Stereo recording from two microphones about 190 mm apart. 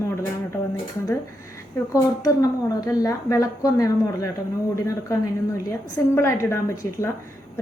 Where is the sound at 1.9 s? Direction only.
20° left (ahead or behind).